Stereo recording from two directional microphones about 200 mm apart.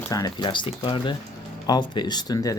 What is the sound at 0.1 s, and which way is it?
Speech, 20° left (ahead or behind).